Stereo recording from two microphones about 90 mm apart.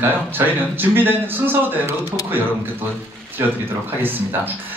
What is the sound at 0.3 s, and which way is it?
Speech, 25° right (ahead or behind).